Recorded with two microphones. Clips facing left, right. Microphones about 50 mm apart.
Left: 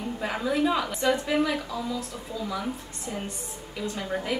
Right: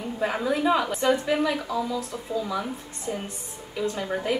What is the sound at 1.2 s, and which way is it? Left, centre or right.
Speech, centre.